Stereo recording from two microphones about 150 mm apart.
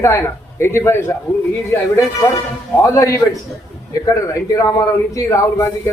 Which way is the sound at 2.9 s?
20° left (ahead or behind).